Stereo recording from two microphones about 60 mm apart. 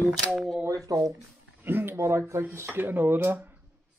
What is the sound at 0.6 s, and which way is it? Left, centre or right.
Speech, right.